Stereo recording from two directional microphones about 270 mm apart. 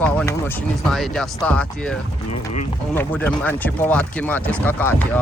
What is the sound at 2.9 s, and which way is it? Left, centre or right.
Speech, centre.